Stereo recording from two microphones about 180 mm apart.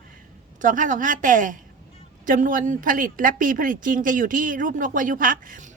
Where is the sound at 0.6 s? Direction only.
45° right (ahead or behind).